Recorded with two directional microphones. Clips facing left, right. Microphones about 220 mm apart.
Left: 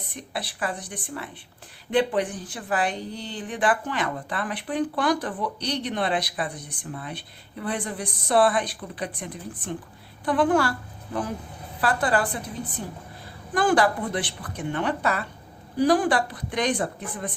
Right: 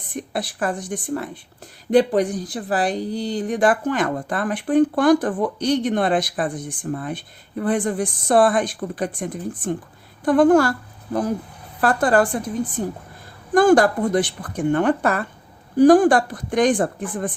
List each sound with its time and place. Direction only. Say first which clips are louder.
0.1 s a woman's voice: right 8 dB; 45° right (ahead or behind)